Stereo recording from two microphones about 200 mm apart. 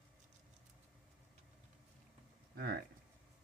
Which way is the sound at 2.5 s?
50° right (ahead or behind).